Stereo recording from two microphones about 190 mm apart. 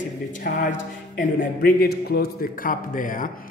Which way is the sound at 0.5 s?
50° left (ahead or behind).